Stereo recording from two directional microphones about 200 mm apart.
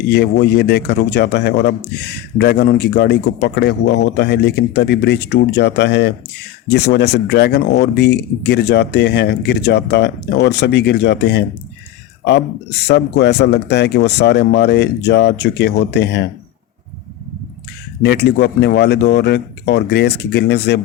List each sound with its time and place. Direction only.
0.1 s speech: 55° left (ahead or behind)
12.9 s speech: 55° left (ahead or behind)
18.0 s speech: 55° left (ahead or behind)